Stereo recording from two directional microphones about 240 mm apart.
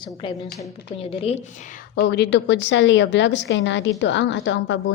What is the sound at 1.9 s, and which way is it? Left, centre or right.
A woman's voice, left.